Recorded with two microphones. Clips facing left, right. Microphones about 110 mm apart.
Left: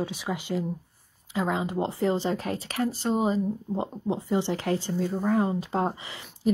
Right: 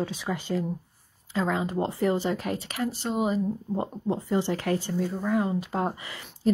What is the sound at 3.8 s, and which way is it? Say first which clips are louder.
Speech: right 1 dB; 20° left (ahead or behind).